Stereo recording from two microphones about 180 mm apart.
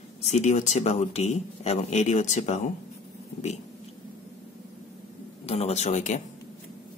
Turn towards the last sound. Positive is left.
turn(degrees=40)  # may be behind; listen again after turning